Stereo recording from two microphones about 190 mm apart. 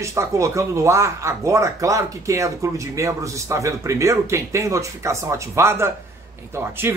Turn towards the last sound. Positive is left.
turn(degrees=-10)  # may be behind; listen again after turning